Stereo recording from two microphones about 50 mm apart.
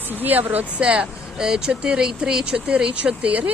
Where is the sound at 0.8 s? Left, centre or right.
Right.